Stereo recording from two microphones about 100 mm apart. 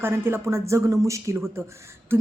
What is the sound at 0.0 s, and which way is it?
A woman's voice, 25° right (ahead or behind).